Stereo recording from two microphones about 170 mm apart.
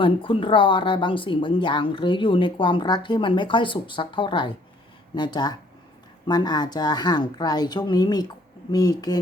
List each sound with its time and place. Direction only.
0.0 s speech: 30° left (ahead or behind)